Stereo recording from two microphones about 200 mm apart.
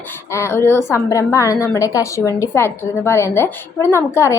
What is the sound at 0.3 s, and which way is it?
A woman's voice, 15° left (ahead or behind).